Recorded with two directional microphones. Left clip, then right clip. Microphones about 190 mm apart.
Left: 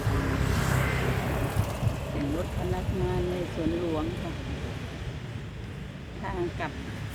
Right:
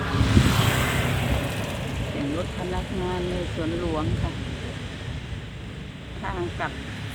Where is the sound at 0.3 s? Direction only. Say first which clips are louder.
Right 7 dB; 30° right (ahead or behind).